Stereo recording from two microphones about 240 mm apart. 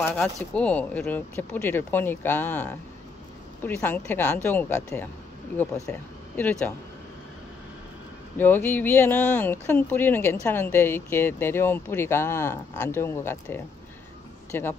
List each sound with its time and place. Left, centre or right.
0.0 s speech: centre
8.4 s a man's voice: centre